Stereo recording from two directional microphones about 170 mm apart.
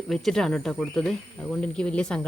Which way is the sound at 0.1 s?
5° left (ahead or behind).